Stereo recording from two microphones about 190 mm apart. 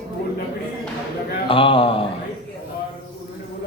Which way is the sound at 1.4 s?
30° left (ahead or behind).